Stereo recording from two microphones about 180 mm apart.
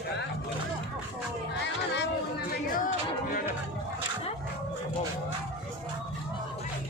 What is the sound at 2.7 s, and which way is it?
Music, 50° left (ahead or behind).